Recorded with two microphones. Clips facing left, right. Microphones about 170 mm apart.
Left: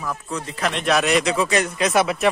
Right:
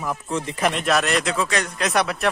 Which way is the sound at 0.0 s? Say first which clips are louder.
Right 2 dB; 20° right (ahead or behind).